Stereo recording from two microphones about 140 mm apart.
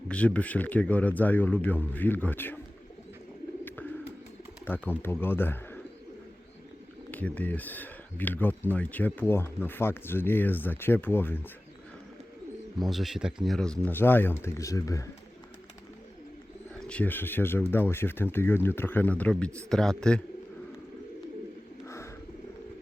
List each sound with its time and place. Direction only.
0.1 s speech: 10° left (ahead or behind)
3.6 s bird: 15° left (ahead or behind)
4.6 s speech: 15° left (ahead or behind)
7.1 s speech: 10° left (ahead or behind)
12.8 s speech: centre (ahead or behind); by 15.0 s 25° left (ahead or behind)
16.8 s a man's voice: 10° left (ahead or behind)
21.8 s wild animals: 20° left (ahead or behind)